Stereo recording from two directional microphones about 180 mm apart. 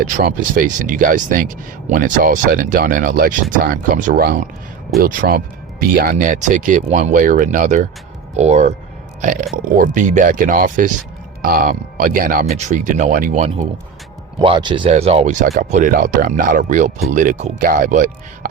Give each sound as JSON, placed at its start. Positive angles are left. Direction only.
{"t": 0.0, "sound": "speech", "side_deg": -50}
{"t": 12.5, "sound": "speech", "side_deg": -40}
{"t": 14.3, "sound": "speech", "side_deg": -25}